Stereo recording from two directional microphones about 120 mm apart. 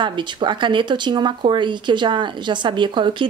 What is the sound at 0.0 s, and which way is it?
Speech, 40° right (ahead or behind).